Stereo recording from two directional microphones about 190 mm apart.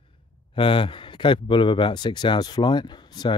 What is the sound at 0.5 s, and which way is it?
Speech, 25° left (ahead or behind).